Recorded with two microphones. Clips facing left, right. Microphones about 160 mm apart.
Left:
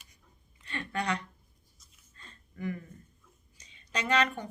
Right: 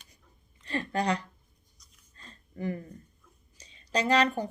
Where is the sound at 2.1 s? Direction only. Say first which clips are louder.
Right 5 dB; 35° right (ahead or behind).